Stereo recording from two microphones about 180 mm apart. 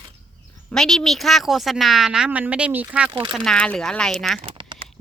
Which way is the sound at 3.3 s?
5° left (ahead or behind).